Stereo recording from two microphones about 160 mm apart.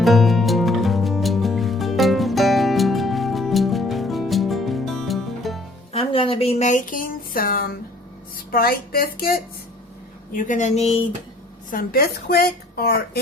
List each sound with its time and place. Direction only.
0.0 s music: centre (ahead or behind)
5.9 s a sound: 35° left (ahead or behind); by 7.8 s 65° left (ahead or behind)
8.5 s a woman's voice: 70° left (ahead or behind)
10.3 s speech: 55° left (ahead or behind)
11.7 s a woman's voice: 70° left (ahead or behind)